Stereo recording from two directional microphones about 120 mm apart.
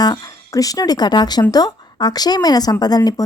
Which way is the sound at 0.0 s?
30° left (ahead or behind).